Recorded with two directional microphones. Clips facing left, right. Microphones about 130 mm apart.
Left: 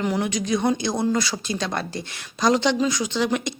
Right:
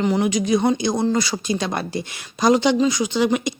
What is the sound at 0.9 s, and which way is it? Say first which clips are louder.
Speech: right 2 dB; 20° right (ahead or behind).